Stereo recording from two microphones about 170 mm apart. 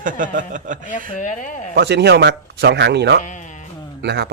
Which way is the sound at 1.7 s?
70° right (ahead or behind).